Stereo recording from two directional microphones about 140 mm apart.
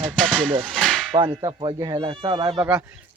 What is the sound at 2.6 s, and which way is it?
Speech, 10° right (ahead or behind).